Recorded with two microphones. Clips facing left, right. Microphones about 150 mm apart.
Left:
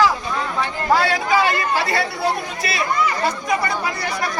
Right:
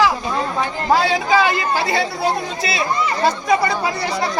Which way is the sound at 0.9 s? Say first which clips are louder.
Right 2 dB; 25° right (ahead or behind).